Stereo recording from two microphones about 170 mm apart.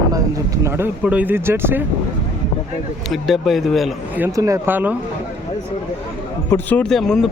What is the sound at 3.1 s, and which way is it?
Speech, centre (ahead or behind).